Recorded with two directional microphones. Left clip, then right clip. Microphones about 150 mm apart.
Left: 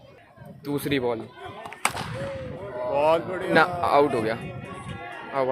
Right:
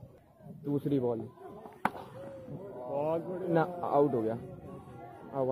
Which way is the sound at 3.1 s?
50° left (ahead or behind).